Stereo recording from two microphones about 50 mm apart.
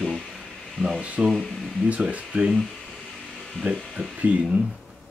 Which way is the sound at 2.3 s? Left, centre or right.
Centre.